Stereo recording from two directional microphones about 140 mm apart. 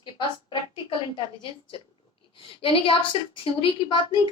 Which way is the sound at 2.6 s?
40° left (ahead or behind).